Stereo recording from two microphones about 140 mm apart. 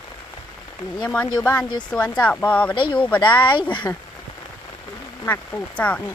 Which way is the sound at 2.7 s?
35° left (ahead or behind).